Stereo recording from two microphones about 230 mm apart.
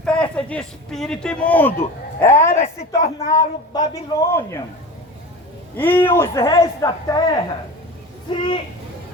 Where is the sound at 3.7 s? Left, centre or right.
Centre.